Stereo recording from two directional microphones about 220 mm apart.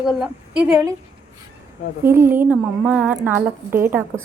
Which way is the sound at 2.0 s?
10° right (ahead or behind).